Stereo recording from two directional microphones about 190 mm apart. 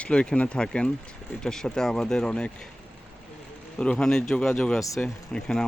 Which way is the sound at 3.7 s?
5° left (ahead or behind).